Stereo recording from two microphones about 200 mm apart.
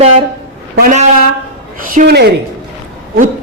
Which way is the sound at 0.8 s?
40° right (ahead or behind).